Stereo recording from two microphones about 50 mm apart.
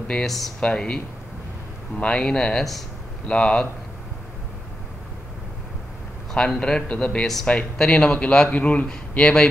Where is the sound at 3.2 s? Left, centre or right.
Left.